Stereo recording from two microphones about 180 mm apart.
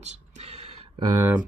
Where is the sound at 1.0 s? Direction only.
20° right (ahead or behind).